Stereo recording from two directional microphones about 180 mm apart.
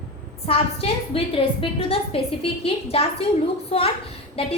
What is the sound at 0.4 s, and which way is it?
A woman's voice, 30° left (ahead or behind).